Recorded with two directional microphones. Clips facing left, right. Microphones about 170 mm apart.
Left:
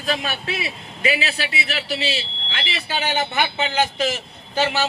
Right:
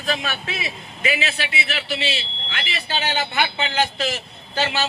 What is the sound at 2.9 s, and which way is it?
A man's voice, 10° left (ahead or behind).